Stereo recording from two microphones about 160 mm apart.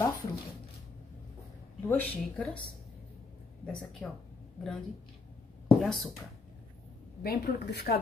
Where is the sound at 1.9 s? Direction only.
10° left (ahead or behind).